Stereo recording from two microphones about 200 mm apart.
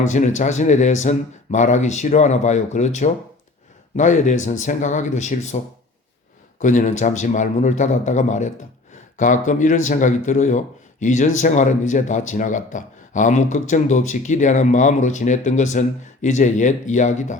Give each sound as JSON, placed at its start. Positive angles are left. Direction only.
{"t": 0.0, "sound": "a man's voice", "side_deg": 40}
{"t": 6.6, "sound": "a man's voice", "side_deg": 40}